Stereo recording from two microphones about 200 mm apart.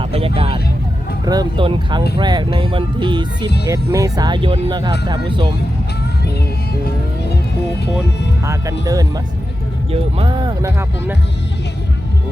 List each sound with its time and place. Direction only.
0.0 s speech: 30° right (ahead or behind)
8.8 s speech: 15° right (ahead or behind)